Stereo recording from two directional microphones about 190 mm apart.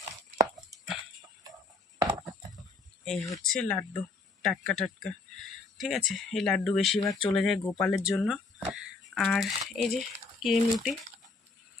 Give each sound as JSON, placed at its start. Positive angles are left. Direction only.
{"t": 2.0, "sound": "horse", "side_deg": -20}
{"t": 3.0, "sound": "speech", "side_deg": 0}